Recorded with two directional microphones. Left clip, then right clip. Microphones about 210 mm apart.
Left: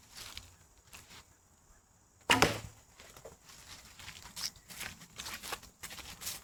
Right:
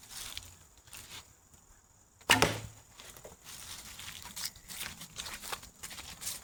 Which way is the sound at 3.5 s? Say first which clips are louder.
Right 6 dB; 30° right (ahead or behind).